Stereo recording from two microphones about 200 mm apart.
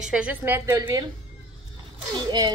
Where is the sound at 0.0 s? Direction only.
5° right (ahead or behind).